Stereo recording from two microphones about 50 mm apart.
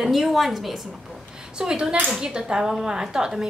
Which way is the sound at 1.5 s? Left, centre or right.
Centre.